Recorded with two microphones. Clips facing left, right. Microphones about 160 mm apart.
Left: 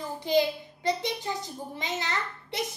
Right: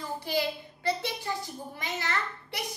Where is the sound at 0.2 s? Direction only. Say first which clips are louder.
Left 7 dB; 20° left (ahead or behind).